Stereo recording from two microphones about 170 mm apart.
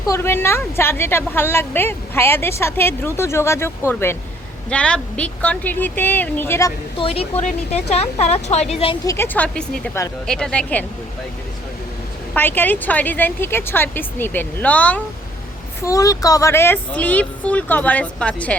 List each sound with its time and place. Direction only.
0.1 s a woman's voice: 15° left (ahead or behind)
7.0 s a woman's voice: 35° left (ahead or behind)
9.0 s a woman's voice: 15° left (ahead or behind)
12.3 s a woman's voice: 10° left (ahead or behind)
15.8 s a woman's voice: 20° left (ahead or behind)